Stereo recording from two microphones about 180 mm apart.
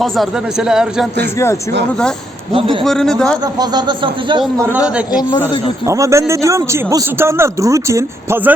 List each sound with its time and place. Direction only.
0.0 s a man's voice: centre (ahead or behind)
2.5 s a man's voice: 30° right (ahead or behind)
2.8 s a man's voice: centre (ahead or behind)
3.4 s a man's voice: 20° right (ahead or behind)
4.6 s speech: 10° right (ahead or behind)
5.8 s speech: 15° right (ahead or behind)